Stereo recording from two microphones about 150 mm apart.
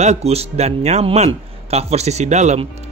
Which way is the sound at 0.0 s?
45° right (ahead or behind).